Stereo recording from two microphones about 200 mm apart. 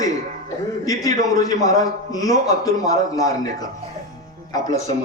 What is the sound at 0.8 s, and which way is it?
A man's voice, 15° left (ahead or behind).